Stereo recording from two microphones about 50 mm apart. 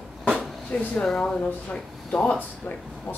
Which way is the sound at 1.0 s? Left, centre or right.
Centre.